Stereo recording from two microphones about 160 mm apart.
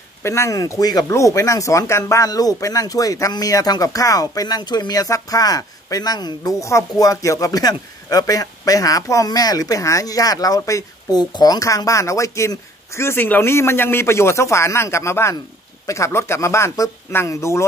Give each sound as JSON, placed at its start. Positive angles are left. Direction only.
{"t": 0.2, "sound": "speech", "side_deg": 15}